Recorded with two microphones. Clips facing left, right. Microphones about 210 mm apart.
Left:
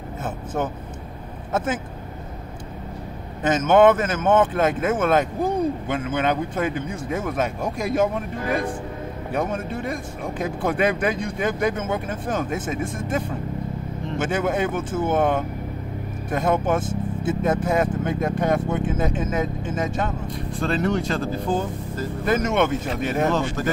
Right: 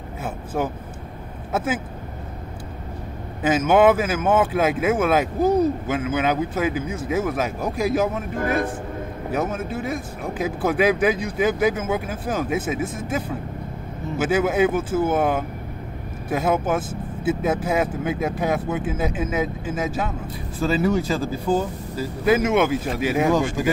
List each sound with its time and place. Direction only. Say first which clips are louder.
1.5 s speech: even; 5° right (ahead or behind)
3.4 s speech: left 1 dB; 5° right (ahead or behind)
8.4 s a man's voice: right 3 dB; 50° right (ahead or behind)
9.3 s speech: right 1 dB; 5° right (ahead or behind)